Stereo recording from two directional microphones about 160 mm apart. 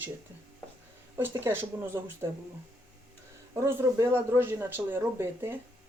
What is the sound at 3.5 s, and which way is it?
Speech, 15° right (ahead or behind).